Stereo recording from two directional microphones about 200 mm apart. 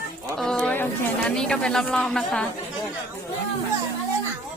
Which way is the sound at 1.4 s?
5° left (ahead or behind).